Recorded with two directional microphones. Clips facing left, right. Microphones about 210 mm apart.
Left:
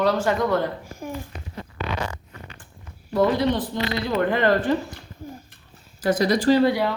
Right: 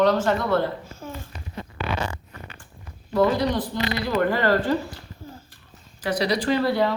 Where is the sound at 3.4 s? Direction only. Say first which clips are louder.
Left 1 dB; 20° left (ahead or behind).